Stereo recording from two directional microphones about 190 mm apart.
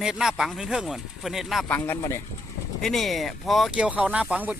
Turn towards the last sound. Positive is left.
turn(degrees=-10)  # may be behind; listen again after turning